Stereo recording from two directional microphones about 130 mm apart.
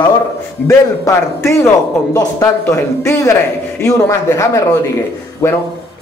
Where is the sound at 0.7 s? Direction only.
20° left (ahead or behind).